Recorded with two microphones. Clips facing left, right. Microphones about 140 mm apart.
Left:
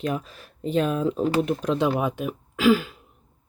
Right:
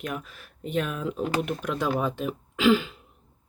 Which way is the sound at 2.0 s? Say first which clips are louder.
Left 2 dB; 10° left (ahead or behind).